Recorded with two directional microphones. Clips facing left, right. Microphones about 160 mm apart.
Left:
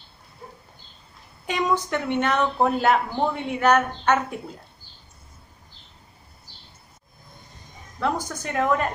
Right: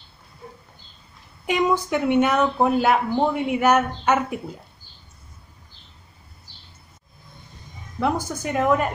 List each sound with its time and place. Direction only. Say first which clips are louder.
1.4 s speech: right 3 dB; 10° right (ahead or behind)
8.0 s speech: right 3 dB; 10° right (ahead or behind)